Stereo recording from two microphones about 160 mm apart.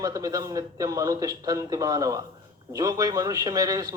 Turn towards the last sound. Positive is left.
turn(degrees=-25)  # may be behind; listen again after turning